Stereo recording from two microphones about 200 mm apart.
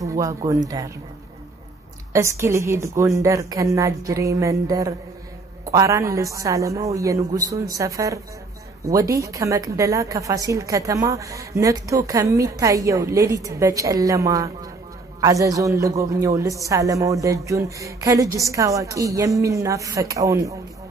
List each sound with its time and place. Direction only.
0.0 s a woman's voice: 15° right (ahead or behind)
2.1 s a woman's voice: 15° right (ahead or behind)